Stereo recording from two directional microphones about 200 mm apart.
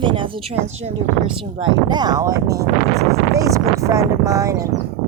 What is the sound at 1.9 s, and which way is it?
Speech, 20° right (ahead or behind).